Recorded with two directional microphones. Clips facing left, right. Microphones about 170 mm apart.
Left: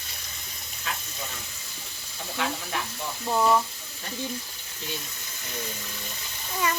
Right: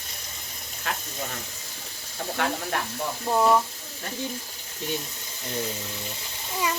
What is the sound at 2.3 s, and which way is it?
Speech, 55° right (ahead or behind).